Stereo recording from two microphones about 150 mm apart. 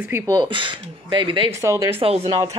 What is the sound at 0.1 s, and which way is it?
Speech, 25° right (ahead or behind).